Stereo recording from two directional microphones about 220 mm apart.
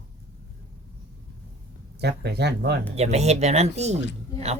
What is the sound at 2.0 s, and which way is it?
Speech, 50° right (ahead or behind).